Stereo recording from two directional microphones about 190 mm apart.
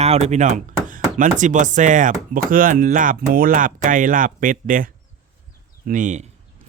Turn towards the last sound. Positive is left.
turn(degrees=-40)  # may be behind; listen again after turning